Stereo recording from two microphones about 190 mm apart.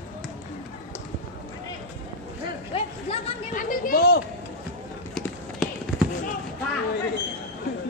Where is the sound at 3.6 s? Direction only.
45° left (ahead or behind).